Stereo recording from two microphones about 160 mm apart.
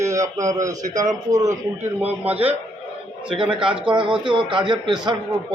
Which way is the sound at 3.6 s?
5° right (ahead or behind).